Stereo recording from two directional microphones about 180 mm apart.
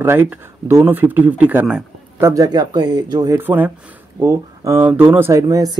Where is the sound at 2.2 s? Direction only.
20° right (ahead or behind).